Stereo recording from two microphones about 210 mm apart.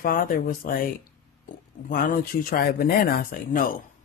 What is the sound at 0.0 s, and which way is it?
Speech, 40° left (ahead or behind).